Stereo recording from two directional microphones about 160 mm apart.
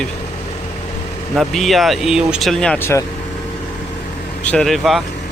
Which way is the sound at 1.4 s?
Centre (ahead or behind).